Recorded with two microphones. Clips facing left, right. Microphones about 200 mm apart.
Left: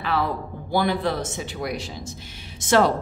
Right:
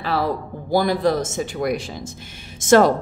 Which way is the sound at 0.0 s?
35° right (ahead or behind).